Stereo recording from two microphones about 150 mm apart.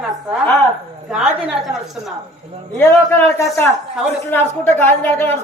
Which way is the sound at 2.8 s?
15° left (ahead or behind).